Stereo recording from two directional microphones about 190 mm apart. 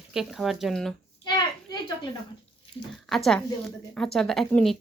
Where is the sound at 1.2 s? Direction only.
20° left (ahead or behind).